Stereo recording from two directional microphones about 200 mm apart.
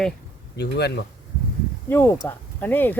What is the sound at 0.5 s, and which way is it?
Speech, 55° left (ahead or behind).